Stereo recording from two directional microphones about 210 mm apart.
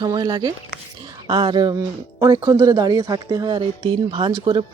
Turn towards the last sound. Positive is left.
turn(degrees=-20)  # may be behind; listen again after turning